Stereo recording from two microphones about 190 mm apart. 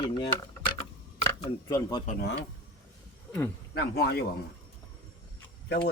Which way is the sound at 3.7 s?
55° left (ahead or behind).